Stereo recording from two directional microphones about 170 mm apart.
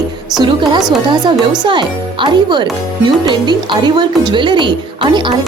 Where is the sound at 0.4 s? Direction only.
25° right (ahead or behind).